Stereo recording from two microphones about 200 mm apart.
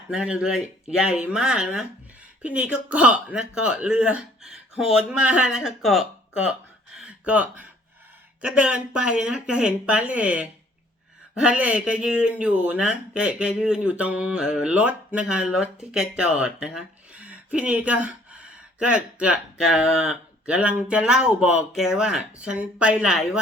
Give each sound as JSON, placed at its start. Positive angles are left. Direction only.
{"t": 0.1, "sound": "speech", "side_deg": -5}
{"t": 4.9, "sound": "speech", "side_deg": 90}
{"t": 5.2, "sound": "speech", "side_deg": -5}